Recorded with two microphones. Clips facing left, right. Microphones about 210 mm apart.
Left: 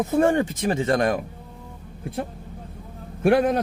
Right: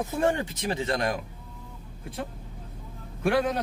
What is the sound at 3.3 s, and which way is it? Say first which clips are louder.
Speech: left 6 dB; 55° left (ahead or behind).